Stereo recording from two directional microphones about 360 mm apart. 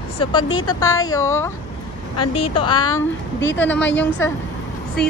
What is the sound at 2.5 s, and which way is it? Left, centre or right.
Speech, centre.